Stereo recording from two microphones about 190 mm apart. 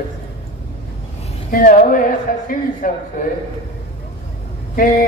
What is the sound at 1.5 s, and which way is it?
A man's voice, 45° left (ahead or behind).